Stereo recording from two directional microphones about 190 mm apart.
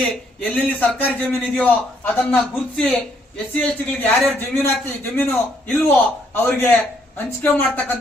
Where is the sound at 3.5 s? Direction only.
5° left (ahead or behind).